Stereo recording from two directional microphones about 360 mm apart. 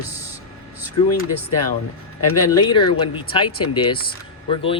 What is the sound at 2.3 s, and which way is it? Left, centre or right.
Speech, left.